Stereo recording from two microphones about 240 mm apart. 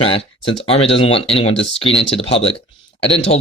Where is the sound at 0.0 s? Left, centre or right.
Left.